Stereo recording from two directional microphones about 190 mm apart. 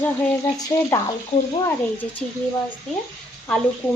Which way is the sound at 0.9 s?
15° left (ahead or behind).